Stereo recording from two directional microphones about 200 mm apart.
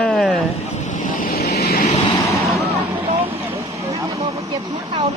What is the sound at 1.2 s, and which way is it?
Vehicle, 50° left (ahead or behind).